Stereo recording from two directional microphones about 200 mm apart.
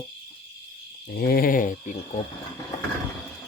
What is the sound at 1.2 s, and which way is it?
Speech, 50° left (ahead or behind).